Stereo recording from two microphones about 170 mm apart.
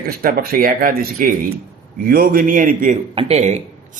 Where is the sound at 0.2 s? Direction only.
60° right (ahead or behind).